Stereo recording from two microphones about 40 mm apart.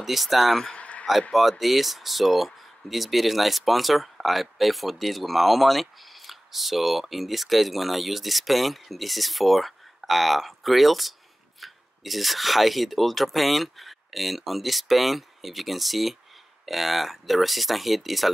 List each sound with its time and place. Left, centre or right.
0.0 s speech: centre
0.7 s a sound: left
1.3 s speech: centre